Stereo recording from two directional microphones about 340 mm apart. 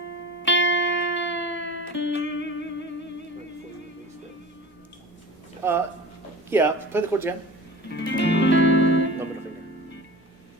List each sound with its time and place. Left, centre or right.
0.4 s music: left
5.6 s speech: centre
7.9 s music: left